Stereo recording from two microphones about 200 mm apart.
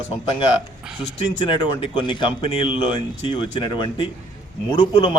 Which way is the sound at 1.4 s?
25° left (ahead or behind).